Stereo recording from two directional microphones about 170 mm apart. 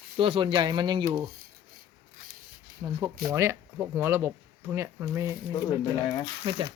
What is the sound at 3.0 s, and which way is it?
Speech, 15° right (ahead or behind).